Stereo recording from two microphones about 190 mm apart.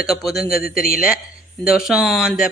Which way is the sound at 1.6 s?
5° right (ahead or behind).